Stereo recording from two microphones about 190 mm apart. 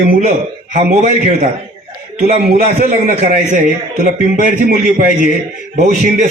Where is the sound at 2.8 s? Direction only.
40° right (ahead or behind).